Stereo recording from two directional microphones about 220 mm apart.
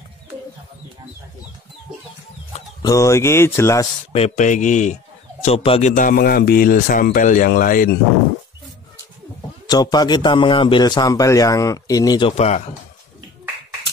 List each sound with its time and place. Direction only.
2.8 s speech: 15° left (ahead or behind)
4.1 s a man's voice: 30° left (ahead or behind)
9.7 s a man's voice: 20° left (ahead or behind)